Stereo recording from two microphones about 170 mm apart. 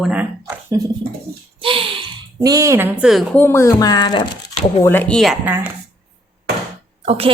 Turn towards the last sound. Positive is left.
turn(degrees=-35)  # may be behind; listen again after turning